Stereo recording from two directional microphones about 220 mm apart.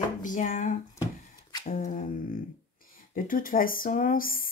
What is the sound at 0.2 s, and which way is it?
Speech, 35° left (ahead or behind).